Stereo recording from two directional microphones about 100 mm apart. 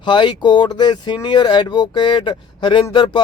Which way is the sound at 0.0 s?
50° left (ahead or behind).